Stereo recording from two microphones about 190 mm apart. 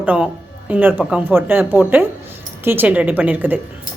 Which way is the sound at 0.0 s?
10° right (ahead or behind).